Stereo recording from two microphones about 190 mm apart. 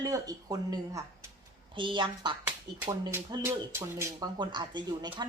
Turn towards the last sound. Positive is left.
turn(degrees=-20)  # may be behind; listen again after turning